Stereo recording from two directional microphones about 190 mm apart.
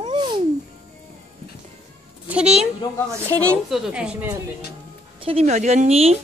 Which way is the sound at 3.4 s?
Centre (ahead or behind).